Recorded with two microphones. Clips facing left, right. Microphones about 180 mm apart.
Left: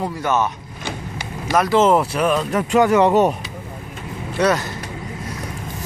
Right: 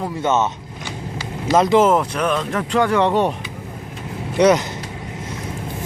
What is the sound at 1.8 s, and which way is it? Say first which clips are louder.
Speech: left 1 dB; centre (ahead or behind).